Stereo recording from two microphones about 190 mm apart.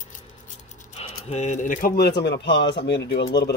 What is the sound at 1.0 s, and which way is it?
Speech, 35° left (ahead or behind).